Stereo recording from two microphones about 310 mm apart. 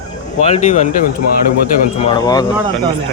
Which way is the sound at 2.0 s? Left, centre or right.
Centre.